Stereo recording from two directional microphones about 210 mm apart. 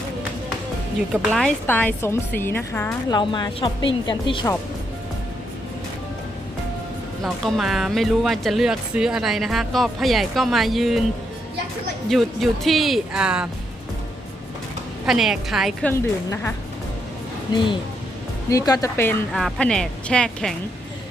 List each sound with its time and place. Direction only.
1.1 s a woman's voice: centre (ahead or behind)
3.2 s a woman's voice: 20° left (ahead or behind)
7.4 s speech: centre (ahead or behind)
12.0 s speech: centre (ahead or behind)
15.0 s speech: centre (ahead or behind)
15.9 s a woman's voice: 10° left (ahead or behind)
17.5 s a woman's voice: 20° left (ahead or behind)
19.3 s speech: centre (ahead or behind)